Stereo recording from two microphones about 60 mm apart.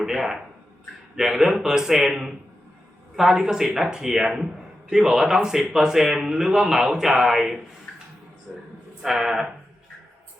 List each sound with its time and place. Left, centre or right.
0.0 s speech: centre
7.9 s a sound: centre
8.5 s a man's voice: centre
9.0 s speech: centre